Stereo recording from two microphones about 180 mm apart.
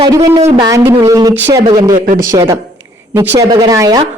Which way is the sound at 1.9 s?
50° right (ahead or behind).